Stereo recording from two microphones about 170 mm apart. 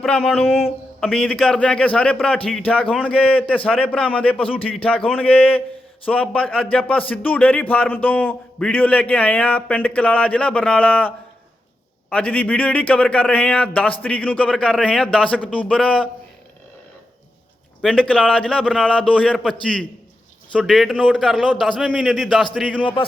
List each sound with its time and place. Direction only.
0.4 s a sound: 5° right (ahead or behind)
1.3 s speech: 5° left (ahead or behind)
4.4 s a man's voice: 35° left (ahead or behind)
4.8 s speech: 5° left (ahead or behind)
12.1 s speech: 10° left (ahead or behind)
17.8 s a man's voice: 5° left (ahead or behind)
22.8 s speech: 30° left (ahead or behind)